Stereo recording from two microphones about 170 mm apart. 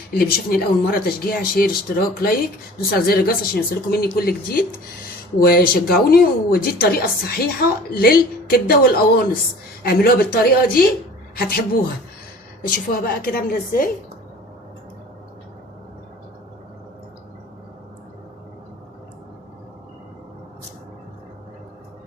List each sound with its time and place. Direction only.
0.1 s speech: 65° left (ahead or behind)
12.6 s speech: 55° left (ahead or behind)